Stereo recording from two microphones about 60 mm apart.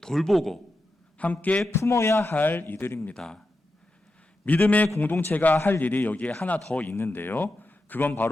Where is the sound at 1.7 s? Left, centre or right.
Left.